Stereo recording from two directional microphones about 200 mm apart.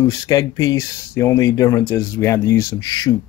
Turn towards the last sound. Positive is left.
turn(degrees=20)  # may be behind; listen again after turning